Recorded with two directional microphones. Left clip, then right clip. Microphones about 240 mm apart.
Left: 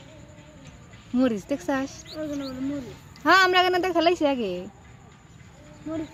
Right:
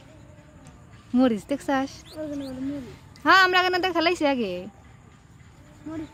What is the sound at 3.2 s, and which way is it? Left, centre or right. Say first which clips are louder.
A child's voice: even; centre.